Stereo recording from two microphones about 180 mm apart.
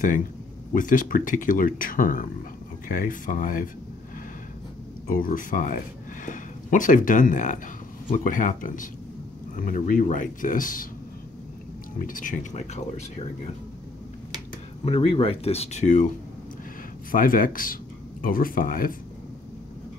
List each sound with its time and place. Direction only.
0.7 s speech: 45° left (ahead or behind)
5.1 s speech: 50° left (ahead or behind)
12.0 s speech: 50° left (ahead or behind)
14.9 s speech: 30° left (ahead or behind)
17.1 s speech: 50° left (ahead or behind)